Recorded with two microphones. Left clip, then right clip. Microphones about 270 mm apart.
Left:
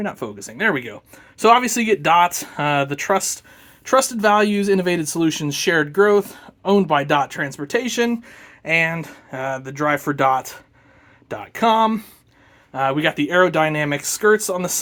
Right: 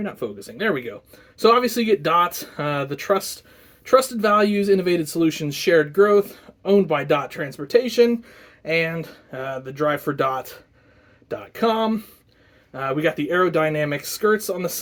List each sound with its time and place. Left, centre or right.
0.0 s speech: left